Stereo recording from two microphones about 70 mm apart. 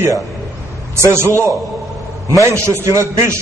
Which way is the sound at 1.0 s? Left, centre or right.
Right.